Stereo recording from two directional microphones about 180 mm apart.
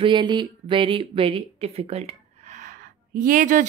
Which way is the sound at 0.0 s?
25° right (ahead or behind).